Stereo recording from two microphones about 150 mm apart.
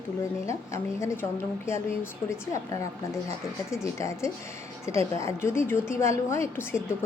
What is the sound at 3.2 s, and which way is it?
A woman's voice, 20° left (ahead or behind).